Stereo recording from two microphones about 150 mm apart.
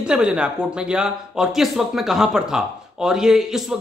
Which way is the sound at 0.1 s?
5° right (ahead or behind).